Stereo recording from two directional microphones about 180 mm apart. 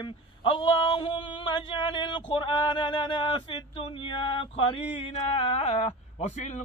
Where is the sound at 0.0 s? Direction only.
30° left (ahead or behind).